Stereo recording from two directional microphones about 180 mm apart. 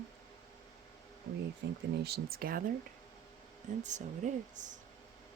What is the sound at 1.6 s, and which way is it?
Speech, 75° right (ahead or behind).